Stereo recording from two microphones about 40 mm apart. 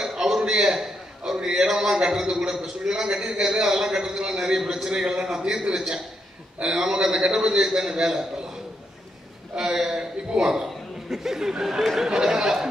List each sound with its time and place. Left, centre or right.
0.0 s a sound: centre
3.0 s a man's voice: centre
9.6 s a man's voice: centre